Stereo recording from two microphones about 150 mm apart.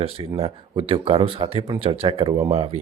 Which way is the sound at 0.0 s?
40° right (ahead or behind).